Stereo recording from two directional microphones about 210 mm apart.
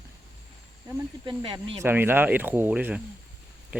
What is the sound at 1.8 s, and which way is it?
Speech, 10° right (ahead or behind).